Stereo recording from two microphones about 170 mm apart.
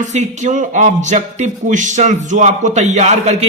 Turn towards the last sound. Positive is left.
turn(degrees=-40)  # may be behind; listen again after turning